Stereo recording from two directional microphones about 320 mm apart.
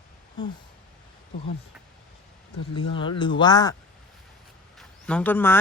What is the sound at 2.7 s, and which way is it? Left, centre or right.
Speech, centre.